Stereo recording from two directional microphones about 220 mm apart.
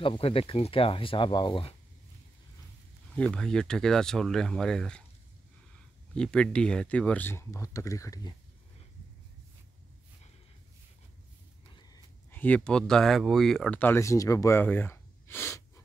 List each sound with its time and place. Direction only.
0.0 s speech: 25° left (ahead or behind)
3.2 s speech: 5° left (ahead or behind)
6.1 s speech: 5° left (ahead or behind)
11.7 s speech: 15° left (ahead or behind)